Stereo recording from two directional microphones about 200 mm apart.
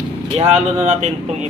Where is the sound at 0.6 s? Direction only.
35° right (ahead or behind).